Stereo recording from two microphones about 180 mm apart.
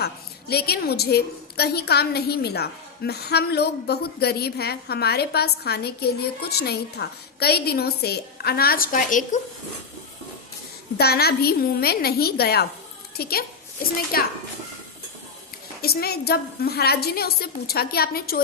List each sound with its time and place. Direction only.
0.0 s a woman's voice: 60° left (ahead or behind)
10.9 s a woman's voice: 60° left (ahead or behind)
15.8 s a woman's voice: 60° left (ahead or behind)